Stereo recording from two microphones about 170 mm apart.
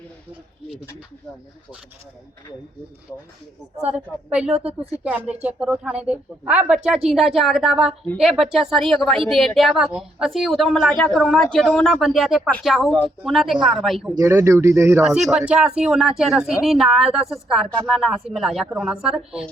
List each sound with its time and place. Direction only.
3.8 s a woman's voice: 5° right (ahead or behind)
14.2 s speech: 15° right (ahead or behind)
15.0 s a woman's voice: 5° right (ahead or behind)